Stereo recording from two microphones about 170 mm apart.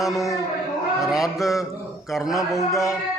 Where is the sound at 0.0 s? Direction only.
Centre (ahead or behind).